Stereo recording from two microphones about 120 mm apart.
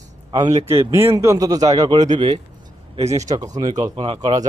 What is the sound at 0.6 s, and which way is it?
A man's voice, 25° right (ahead or behind).